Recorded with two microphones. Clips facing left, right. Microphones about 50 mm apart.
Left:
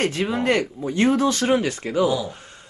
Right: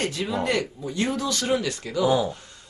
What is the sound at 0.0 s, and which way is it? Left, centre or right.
Speech, left.